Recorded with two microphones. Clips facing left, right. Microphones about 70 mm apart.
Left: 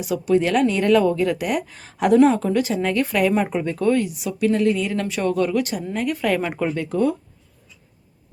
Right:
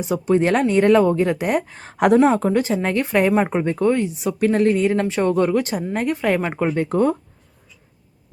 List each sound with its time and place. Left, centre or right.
0.0 s speech: right
4.2 s speech: right
6.1 s speech: right
6.8 s speech: right